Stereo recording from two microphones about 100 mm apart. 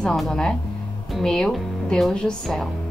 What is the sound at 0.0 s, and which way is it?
A woman's voice, 5° left (ahead or behind).